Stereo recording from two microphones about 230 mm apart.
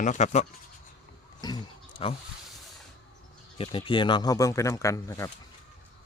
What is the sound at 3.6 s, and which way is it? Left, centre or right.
Speech, left.